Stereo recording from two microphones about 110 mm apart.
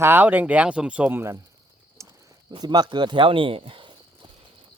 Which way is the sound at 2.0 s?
30° right (ahead or behind).